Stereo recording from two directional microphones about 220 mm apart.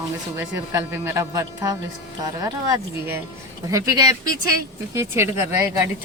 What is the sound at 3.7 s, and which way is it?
Speech, 15° right (ahead or behind).